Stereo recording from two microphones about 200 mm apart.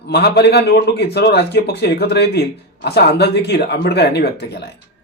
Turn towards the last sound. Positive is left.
turn(degrees=55)  # may be behind; listen again after turning